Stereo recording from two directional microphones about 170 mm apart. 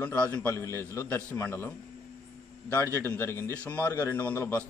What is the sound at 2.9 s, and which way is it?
A man's voice, 15° left (ahead or behind).